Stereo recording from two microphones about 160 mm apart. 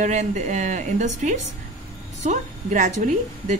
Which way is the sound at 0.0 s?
50° right (ahead or behind).